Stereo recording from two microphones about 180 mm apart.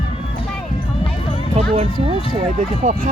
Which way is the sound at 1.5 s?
35° right (ahead or behind).